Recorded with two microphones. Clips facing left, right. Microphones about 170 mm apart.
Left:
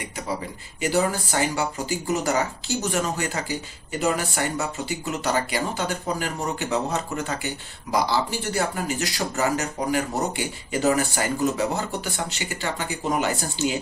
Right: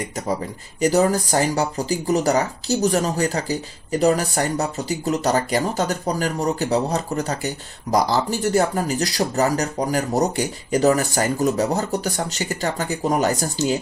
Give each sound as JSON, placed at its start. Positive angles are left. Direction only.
{"t": 0.0, "sound": "speech", "side_deg": -40}